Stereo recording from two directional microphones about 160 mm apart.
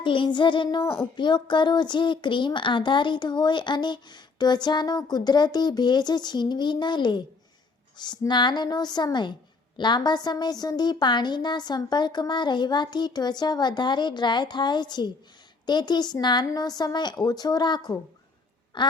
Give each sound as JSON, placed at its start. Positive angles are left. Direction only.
{"t": 0.0, "sound": "child singing", "side_deg": 30}